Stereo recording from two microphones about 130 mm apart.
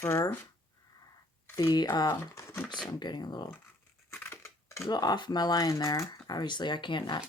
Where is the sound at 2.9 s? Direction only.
35° left (ahead or behind).